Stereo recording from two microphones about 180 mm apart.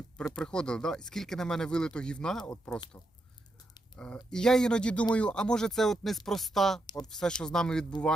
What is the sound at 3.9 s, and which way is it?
Speech, 5° left (ahead or behind).